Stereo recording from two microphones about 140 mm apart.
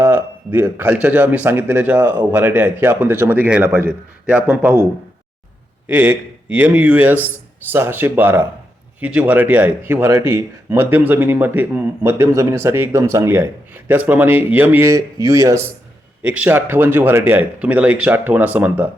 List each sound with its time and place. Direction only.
0.0 s speech: 15° right (ahead or behind)
5.9 s speech: 10° right (ahead or behind)
16.2 s speech: 10° right (ahead or behind)